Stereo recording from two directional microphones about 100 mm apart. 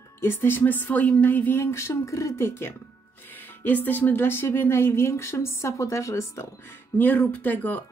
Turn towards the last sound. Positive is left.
turn(degrees=15)  # may be behind; listen again after turning